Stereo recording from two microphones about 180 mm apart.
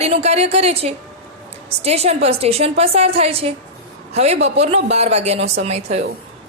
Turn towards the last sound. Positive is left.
turn(degrees=-40)  # may be behind; listen again after turning